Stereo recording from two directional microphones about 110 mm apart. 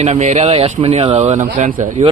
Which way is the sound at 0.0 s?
85° right.